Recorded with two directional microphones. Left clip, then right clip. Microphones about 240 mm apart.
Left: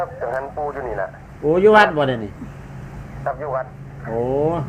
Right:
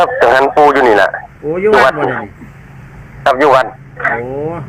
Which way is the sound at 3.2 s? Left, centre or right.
Right.